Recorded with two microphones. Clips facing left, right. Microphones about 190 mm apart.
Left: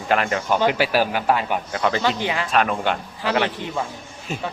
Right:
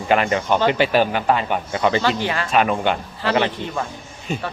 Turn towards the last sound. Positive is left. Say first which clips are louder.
# right 2 dB
turn(degrees=0)  # may be behind; listen again after turning